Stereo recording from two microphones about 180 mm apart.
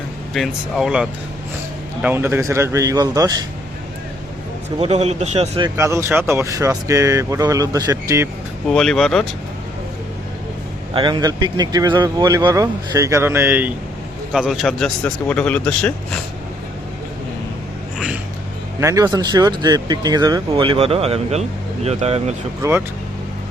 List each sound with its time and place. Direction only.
0.3 s speech: centre (ahead or behind); by 3.4 s 20° right (ahead or behind)
4.8 s a man's voice: 35° right (ahead or behind)
5.5 s speech: 20° right (ahead or behind)
8.7 s speech: 5° left (ahead or behind)
10.9 s speech: 25° right (ahead or behind); by 15.9 s 5° left (ahead or behind)
18.8 s a man's voice: 20° right (ahead or behind); by 22.4 s 35° right (ahead or behind)